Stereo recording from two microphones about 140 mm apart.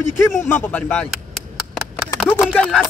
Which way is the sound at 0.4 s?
15° left (ahead or behind).